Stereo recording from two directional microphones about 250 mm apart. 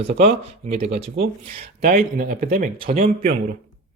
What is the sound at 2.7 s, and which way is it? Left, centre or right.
Speech, right.